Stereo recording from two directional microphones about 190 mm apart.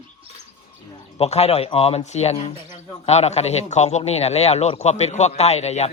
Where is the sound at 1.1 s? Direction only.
30° left (ahead or behind).